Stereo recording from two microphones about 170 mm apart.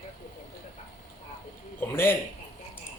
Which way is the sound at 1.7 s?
15° left (ahead or behind).